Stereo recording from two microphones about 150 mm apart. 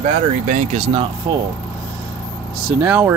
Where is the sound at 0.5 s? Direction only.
55° right (ahead or behind).